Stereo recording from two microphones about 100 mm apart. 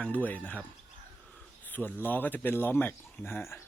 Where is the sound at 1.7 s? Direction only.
15° left (ahead or behind).